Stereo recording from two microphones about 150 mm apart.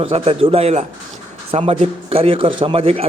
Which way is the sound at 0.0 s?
40° right (ahead or behind).